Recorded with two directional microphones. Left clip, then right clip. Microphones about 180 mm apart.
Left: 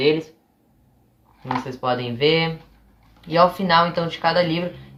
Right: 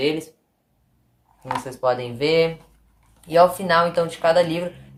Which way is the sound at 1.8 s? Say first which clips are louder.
Even; 25° right (ahead or behind).